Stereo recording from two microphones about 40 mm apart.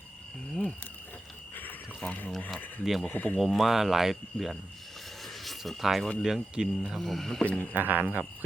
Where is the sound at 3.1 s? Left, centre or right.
Left.